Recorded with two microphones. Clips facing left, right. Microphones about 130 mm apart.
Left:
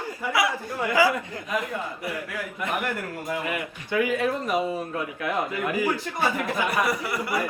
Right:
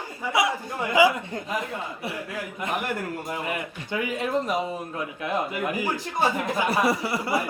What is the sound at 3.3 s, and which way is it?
Speech, 25° right (ahead or behind).